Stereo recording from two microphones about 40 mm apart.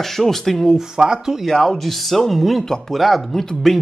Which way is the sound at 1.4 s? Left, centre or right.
Centre.